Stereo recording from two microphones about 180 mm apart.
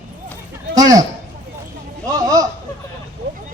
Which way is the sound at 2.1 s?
20° right (ahead or behind).